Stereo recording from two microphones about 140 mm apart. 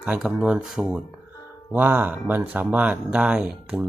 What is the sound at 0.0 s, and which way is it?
Speech, 10° right (ahead or behind).